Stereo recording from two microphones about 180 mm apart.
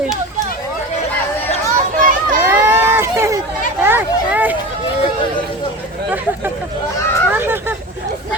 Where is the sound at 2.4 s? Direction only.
10° right (ahead or behind).